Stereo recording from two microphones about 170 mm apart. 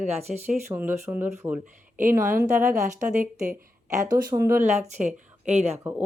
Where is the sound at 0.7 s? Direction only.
10° right (ahead or behind).